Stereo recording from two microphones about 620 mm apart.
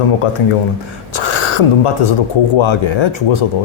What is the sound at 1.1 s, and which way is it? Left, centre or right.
Speech, left.